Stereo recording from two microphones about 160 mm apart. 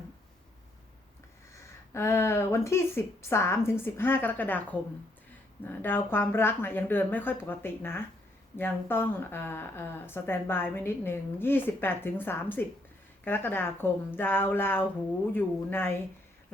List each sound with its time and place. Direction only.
1.9 s speech: 15° left (ahead or behind)